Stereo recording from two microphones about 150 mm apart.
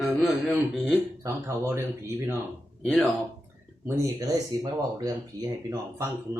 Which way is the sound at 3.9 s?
25° right (ahead or behind).